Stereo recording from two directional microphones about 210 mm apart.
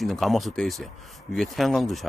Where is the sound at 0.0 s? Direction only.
Centre (ahead or behind).